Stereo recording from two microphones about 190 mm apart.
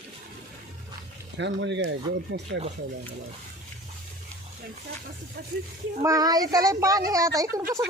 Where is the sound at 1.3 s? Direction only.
70° right (ahead or behind).